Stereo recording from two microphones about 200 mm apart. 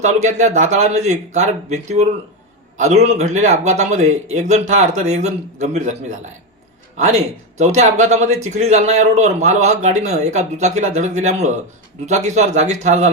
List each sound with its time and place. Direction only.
0.0 s speech: 35° right (ahead or behind)